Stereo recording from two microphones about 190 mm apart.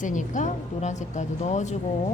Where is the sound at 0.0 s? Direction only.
40° left (ahead or behind).